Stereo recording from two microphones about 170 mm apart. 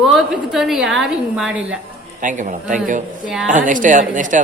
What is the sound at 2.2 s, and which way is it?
A man's voice, 50° right (ahead or behind).